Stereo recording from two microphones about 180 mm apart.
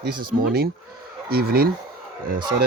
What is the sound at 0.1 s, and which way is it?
Speech, 55° right (ahead or behind).